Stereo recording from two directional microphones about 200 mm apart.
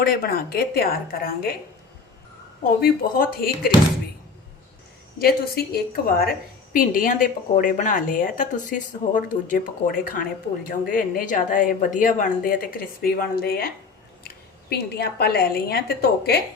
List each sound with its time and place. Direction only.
0.0 s speech: 50° left (ahead or behind)
2.8 s speech: 50° left (ahead or behind)
5.2 s a woman's voice: 50° left (ahead or behind)